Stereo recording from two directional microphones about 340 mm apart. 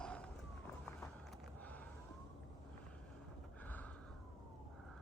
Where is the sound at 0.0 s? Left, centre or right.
Centre.